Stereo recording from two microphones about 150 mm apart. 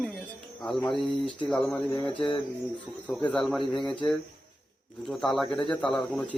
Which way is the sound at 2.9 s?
5° right (ahead or behind).